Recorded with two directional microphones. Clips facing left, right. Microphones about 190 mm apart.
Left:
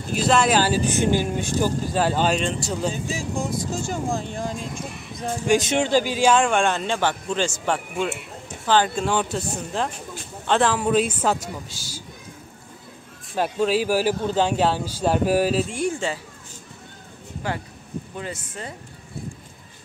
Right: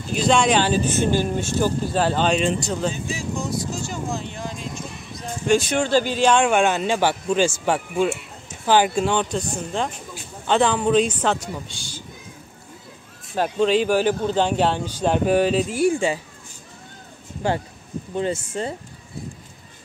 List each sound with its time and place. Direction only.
0.1 s speech: 5° left (ahead or behind)
2.3 s speech: centre (ahead or behind)
3.1 s speech: 45° left (ahead or behind)
5.5 s speech: 20° left (ahead or behind); by 9.0 s 10° right (ahead or behind)
9.0 s speech: 5° left (ahead or behind)
13.3 s speech: 5° left (ahead or behind); by 16.2 s 15° right (ahead or behind)
17.4 s speech: 30° right (ahead or behind)